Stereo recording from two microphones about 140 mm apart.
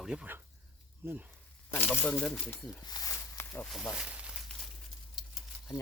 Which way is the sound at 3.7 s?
5° right (ahead or behind).